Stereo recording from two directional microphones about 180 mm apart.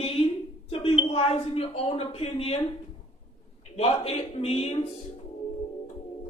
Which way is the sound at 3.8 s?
35° left (ahead or behind).